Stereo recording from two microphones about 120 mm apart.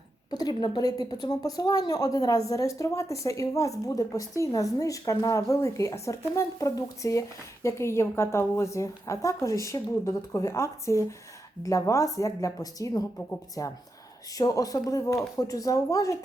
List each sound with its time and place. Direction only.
0.3 s a woman's voice: 35° left (ahead or behind)